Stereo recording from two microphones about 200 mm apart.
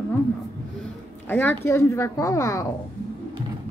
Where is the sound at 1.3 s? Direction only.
10° left (ahead or behind).